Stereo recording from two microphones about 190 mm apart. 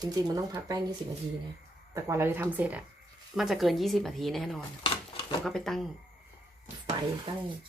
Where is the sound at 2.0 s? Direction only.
15° right (ahead or behind).